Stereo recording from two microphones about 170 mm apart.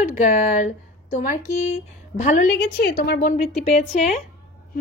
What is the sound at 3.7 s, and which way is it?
Speech, 45° left (ahead or behind).